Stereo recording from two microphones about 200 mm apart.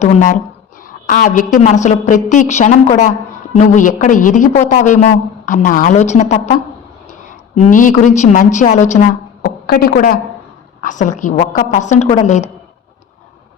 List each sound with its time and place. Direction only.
0.0 s a woman's voice: 40° left (ahead or behind)
10.8 s a woman's voice: 40° left (ahead or behind)